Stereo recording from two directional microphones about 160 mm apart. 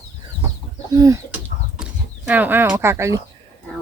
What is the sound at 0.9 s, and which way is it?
Speech, 20° right (ahead or behind).